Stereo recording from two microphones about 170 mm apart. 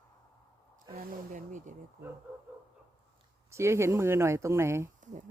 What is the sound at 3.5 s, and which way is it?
Speech, 15° right (ahead or behind).